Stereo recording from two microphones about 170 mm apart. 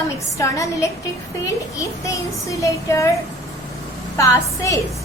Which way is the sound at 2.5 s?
20° left (ahead or behind).